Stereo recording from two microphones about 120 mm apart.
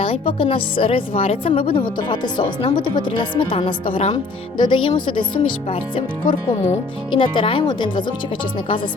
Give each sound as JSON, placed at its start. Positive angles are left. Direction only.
{"t": 0.0, "sound": "speech", "side_deg": 50}